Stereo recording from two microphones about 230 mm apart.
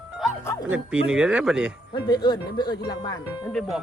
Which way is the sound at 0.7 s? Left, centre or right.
Centre.